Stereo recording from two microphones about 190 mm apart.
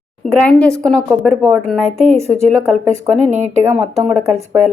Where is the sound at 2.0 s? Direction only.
35° left (ahead or behind).